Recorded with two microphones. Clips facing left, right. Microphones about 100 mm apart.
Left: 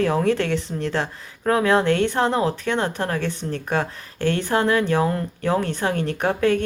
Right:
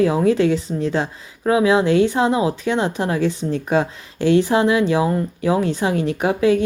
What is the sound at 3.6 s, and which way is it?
Speech, 15° right (ahead or behind).